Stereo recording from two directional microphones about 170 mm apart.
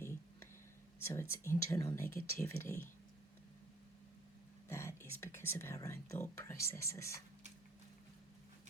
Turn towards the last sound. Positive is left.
turn(degrees=15)  # may be behind; listen again after turning